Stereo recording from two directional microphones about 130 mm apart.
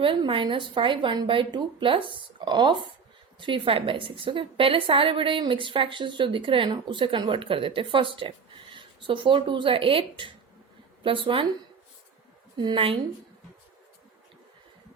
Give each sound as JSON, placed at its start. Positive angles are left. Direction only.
{"t": 0.0, "sound": "a woman's voice", "side_deg": -40}
{"t": 12.5, "sound": "a woman's voice", "side_deg": -40}